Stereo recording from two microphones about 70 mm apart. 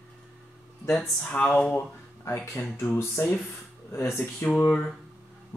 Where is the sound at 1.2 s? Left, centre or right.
Left.